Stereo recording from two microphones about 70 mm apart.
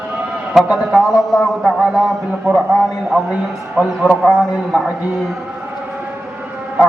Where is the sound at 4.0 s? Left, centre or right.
Centre.